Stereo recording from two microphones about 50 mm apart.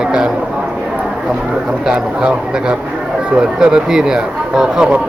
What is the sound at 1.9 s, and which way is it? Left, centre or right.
Speech, centre.